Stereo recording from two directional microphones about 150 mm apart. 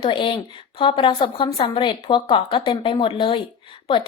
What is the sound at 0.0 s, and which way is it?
A woman's voice, 35° left (ahead or behind).